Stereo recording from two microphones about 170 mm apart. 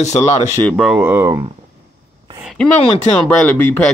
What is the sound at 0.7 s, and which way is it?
Speech, 5° right (ahead or behind).